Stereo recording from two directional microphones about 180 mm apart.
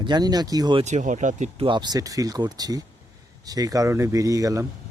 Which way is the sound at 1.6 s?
25° right (ahead or behind).